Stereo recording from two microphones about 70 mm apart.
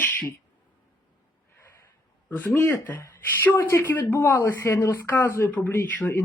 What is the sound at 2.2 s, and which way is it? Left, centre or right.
Speech, left.